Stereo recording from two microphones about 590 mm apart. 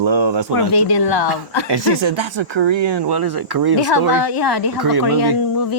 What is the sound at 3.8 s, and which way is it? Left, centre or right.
A woman's voice, left.